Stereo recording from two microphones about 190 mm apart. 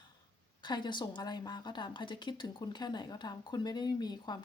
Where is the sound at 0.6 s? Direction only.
25° left (ahead or behind).